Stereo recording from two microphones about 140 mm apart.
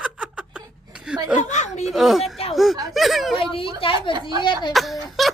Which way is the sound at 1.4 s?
60° left (ahead or behind).